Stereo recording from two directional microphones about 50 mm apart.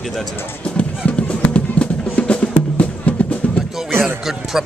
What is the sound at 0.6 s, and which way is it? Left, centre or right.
Music, left.